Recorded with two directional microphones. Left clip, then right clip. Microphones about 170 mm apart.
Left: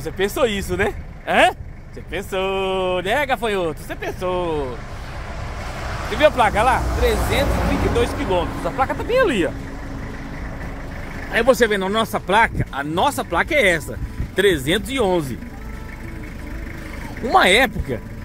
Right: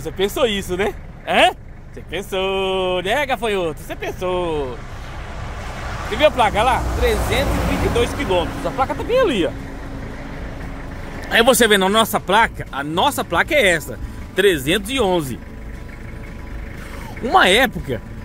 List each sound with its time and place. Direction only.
0.0 s speech: 5° right (ahead or behind)
5.8 s vehicle: 20° left (ahead or behind)
6.1 s speech: 5° right (ahead or behind)
8.4 s speech: 50° right (ahead or behind)
8.6 s speech: 5° right (ahead or behind)
11.3 s speech: 50° right (ahead or behind)
11.9 s speech: 25° right (ahead or behind)
12.4 s speech: 5° right (ahead or behind)
17.2 s speech: 10° right (ahead or behind)